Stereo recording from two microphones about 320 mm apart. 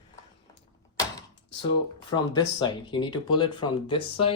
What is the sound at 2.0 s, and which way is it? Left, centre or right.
Speech, centre.